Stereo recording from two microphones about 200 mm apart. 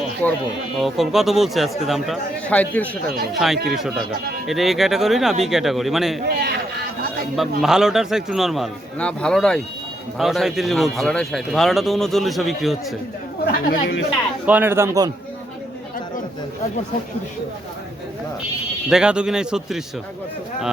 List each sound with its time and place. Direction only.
0.2 s speech: 10° left (ahead or behind)
6.2 s a man's voice: 55° right (ahead or behind)
7.3 s speech: centre (ahead or behind)
13.4 s speech: 50° left (ahead or behind)
14.4 s speech: 10° right (ahead or behind)
18.9 s speech: 5° right (ahead or behind)